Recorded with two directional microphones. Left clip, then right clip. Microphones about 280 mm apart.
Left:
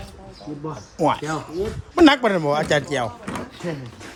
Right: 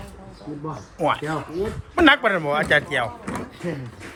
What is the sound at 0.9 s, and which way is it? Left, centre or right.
A man's voice, left.